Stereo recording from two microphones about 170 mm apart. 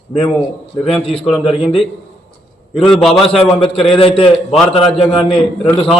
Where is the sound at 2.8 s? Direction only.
Centre (ahead or behind).